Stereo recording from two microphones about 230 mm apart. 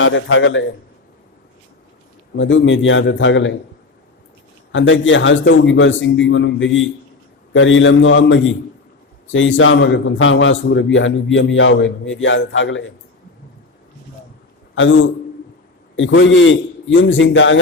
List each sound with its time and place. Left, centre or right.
0.0 s a man's voice: left
2.3 s a man's voice: left
4.7 s a man's voice: left
14.8 s a man's voice: left